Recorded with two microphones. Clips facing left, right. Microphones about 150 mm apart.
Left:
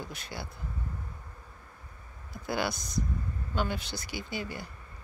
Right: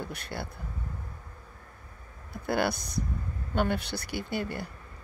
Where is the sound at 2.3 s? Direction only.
55° right (ahead or behind).